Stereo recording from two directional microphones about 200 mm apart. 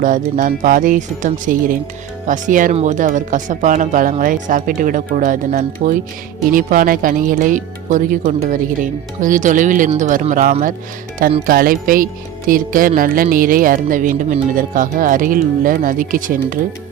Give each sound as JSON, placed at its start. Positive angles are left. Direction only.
{"t": 0.0, "sound": "speech", "side_deg": -40}